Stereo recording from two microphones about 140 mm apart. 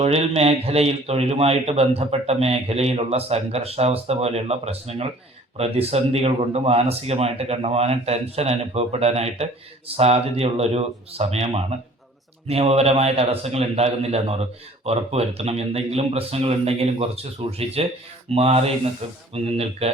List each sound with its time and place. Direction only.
0.0 s speech: 50° right (ahead or behind)